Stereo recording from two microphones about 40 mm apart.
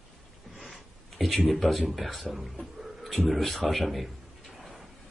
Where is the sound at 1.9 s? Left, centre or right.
Centre.